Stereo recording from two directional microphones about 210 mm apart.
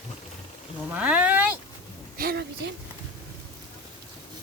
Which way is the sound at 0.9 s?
5° right (ahead or behind).